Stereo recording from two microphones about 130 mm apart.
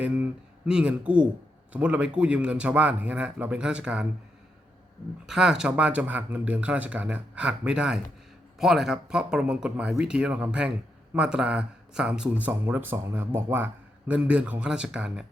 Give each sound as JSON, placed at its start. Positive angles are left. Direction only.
{"t": 0.0, "sound": "speech", "side_deg": -10}
{"t": 5.2, "sound": "speech", "side_deg": -5}